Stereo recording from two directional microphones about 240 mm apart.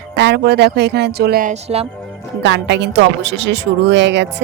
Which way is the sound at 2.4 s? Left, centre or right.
Right.